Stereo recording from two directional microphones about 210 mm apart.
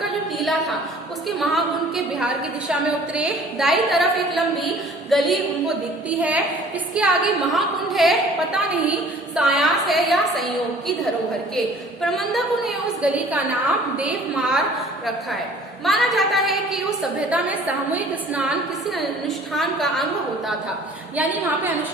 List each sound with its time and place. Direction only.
0.0 s a sound: centre (ahead or behind)
2.1 s a woman's voice: 5° right (ahead or behind)
15.8 s a woman's voice: centre (ahead or behind)
21.2 s a woman's voice: 10° right (ahead or behind)